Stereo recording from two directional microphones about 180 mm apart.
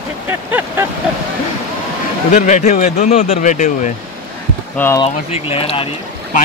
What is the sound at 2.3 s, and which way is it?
Speech, 40° left (ahead or behind).